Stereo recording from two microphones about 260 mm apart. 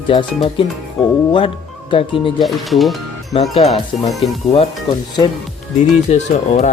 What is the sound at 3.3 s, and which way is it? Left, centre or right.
Speech, left.